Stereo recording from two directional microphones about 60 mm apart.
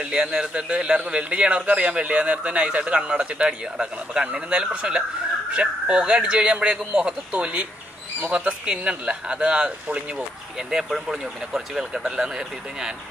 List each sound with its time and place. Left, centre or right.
0.0 s a man's voice: centre